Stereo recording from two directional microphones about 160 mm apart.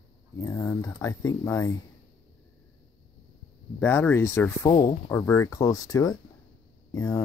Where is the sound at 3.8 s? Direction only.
15° left (ahead or behind).